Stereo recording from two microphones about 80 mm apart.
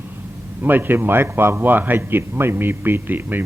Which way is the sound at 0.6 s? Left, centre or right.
Right.